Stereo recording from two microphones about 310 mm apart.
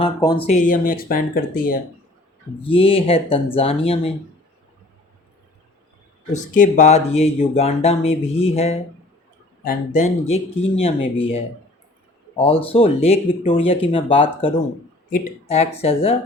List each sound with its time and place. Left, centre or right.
0.0 s speech: centre
2.6 s speech: centre
6.3 s speech: left